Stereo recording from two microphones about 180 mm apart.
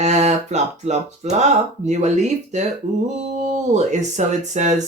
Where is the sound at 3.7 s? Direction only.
40° right (ahead or behind).